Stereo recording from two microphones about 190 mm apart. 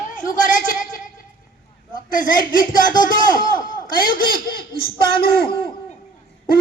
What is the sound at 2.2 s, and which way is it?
Speech, 45° left (ahead or behind).